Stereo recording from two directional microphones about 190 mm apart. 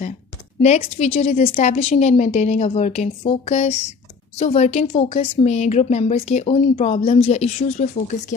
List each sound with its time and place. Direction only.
0.6 s a woman's voice: 35° left (ahead or behind)